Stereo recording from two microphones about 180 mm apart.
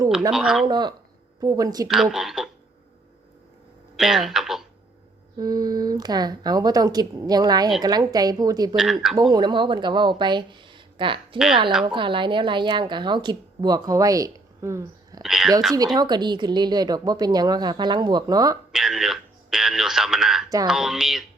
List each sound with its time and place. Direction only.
0.3 s speech: 5° right (ahead or behind)
0.7 s speech: 25° right (ahead or behind)
1.9 s speech: centre (ahead or behind)
3.9 s speech: centre (ahead or behind)
5.4 s speech: 20° right (ahead or behind)
8.7 s speech: centre (ahead or behind)
9.3 s speech: 25° right (ahead or behind)
15.2 s speech: centre (ahead or behind)
15.7 s speech: 20° right (ahead or behind)
18.7 s speech: centre (ahead or behind)